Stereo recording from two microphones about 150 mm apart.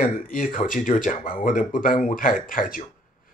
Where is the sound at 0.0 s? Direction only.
65° left (ahead or behind).